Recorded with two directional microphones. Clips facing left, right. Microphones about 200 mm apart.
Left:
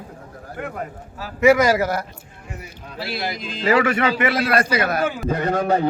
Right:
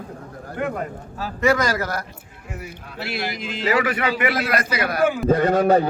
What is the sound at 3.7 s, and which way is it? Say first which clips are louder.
A man's voice: left 4 dB; 25° left (ahead or behind).